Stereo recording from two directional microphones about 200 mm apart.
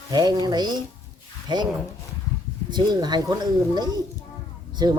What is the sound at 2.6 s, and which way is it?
Speech, 20° right (ahead or behind).